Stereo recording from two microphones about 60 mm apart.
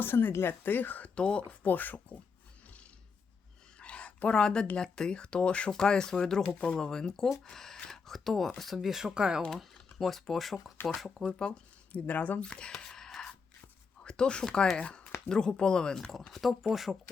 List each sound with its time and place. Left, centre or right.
0.0 s speech: left
1.1 s speech: centre
1.6 s speech: left
3.8 s a sound: centre
4.8 s speech: centre
9.7 s speech: centre
11.3 s speech: centre
11.9 s speech: left
16.1 s speech: centre